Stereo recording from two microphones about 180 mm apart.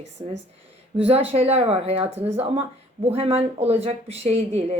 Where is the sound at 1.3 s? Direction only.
35° right (ahead or behind).